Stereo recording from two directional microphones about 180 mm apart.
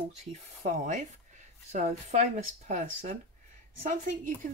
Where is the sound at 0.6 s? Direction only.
40° right (ahead or behind).